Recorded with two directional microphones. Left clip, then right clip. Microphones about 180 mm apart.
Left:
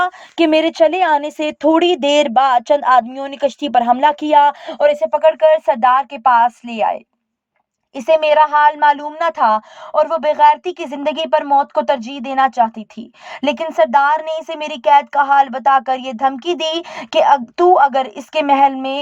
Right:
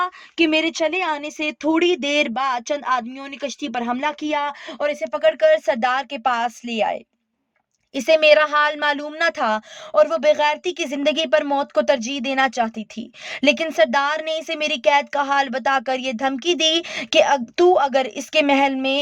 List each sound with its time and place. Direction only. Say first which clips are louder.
0.0 s speech: left 5 dB; 15° left (ahead or behind)
5.3 s a woman's voice: left 1 dB; 35° right (ahead or behind)